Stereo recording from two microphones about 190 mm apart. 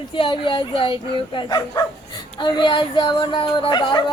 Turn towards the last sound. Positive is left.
turn(degrees=25)  # may be behind; listen again after turning